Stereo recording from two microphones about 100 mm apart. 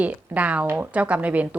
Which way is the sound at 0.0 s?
15° right (ahead or behind).